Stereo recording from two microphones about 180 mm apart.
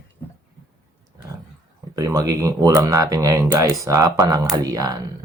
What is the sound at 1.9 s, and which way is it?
Speech, 20° right (ahead or behind).